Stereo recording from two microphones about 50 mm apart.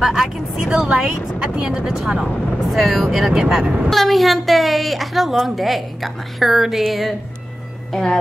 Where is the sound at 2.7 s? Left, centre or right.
Centre.